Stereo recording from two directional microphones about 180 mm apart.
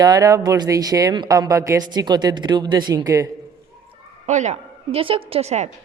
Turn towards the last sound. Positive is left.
turn(degrees=-35)  # may be behind; listen again after turning